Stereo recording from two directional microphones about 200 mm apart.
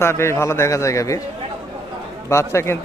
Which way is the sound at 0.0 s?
15° left (ahead or behind).